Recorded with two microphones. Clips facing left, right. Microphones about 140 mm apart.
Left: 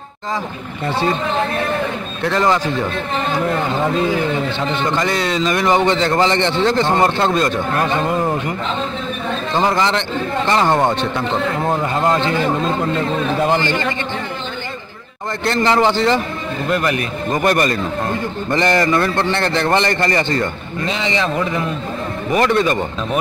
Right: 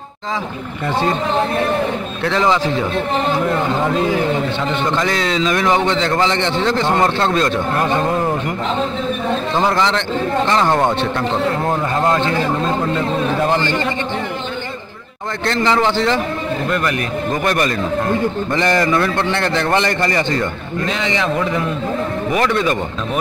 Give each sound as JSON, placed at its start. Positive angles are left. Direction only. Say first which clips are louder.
{"t": 2.2, "sound": "a man's voice", "louder": "even", "side_deg": 0}
{"t": 4.8, "sound": "a man's voice", "louder": "even", "side_deg": 0}
{"t": 9.6, "sound": "a man's voice", "louder": "left 1 dB", "side_deg": 0}
{"t": 15.4, "sound": "a man's voice", "louder": "left 1 dB", "side_deg": 5}
{"t": 17.5, "sound": "a man's voice", "louder": "left 2 dB", "side_deg": 0}
{"t": 22.3, "sound": "a man's voice", "louder": "left 3 dB", "side_deg": -5}